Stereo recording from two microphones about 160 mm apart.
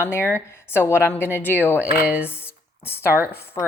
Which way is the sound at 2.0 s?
10° right (ahead or behind).